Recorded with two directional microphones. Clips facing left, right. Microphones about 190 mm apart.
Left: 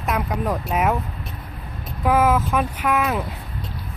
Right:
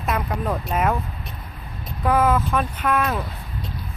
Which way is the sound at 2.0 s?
5° left (ahead or behind).